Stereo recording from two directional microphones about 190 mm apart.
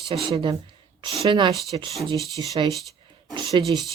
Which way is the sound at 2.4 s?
20° right (ahead or behind).